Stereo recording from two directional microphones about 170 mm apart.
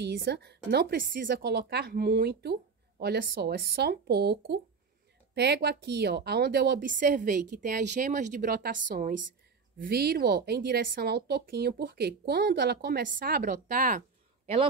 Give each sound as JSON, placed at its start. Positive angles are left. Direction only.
{"t": 0.0, "sound": "a woman's voice", "side_deg": -75}
{"t": 1.3, "sound": "a woman's voice", "side_deg": -70}
{"t": 6.8, "sound": "a woman's voice", "side_deg": -50}
{"t": 9.8, "sound": "a woman's voice", "side_deg": -65}